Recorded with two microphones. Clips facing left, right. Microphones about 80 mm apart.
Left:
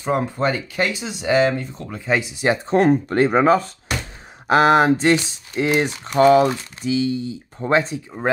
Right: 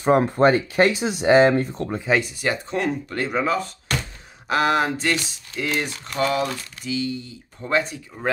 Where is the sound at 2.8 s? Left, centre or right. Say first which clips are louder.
Left 9 dB; left.